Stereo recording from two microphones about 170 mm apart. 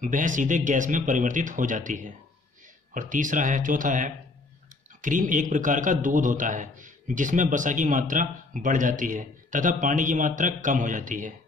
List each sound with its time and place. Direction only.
0.0 s a man's voice: 50° right (ahead or behind)